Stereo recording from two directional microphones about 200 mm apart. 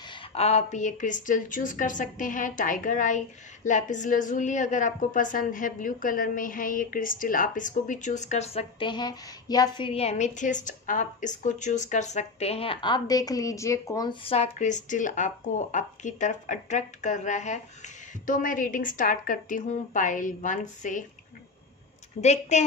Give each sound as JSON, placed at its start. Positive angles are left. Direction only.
{"t": 0.1, "sound": "a woman's voice", "side_deg": 30}
{"t": 22.2, "sound": "a woman's voice", "side_deg": 35}